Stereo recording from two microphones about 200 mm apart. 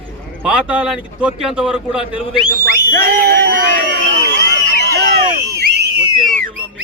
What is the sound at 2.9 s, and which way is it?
Speech, 45° right (ahead or behind).